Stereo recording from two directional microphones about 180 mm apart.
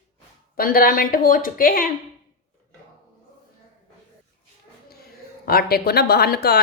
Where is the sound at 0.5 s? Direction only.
55° left (ahead or behind).